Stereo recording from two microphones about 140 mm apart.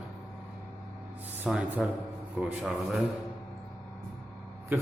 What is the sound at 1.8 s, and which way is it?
A man's voice, centre (ahead or behind).